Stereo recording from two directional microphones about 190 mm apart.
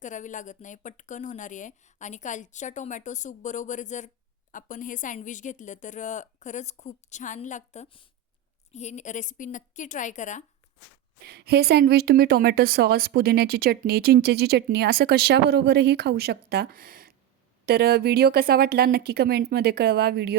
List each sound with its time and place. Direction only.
0.0 s speech: 40° left (ahead or behind)
11.3 s a woman's voice: 60° right (ahead or behind)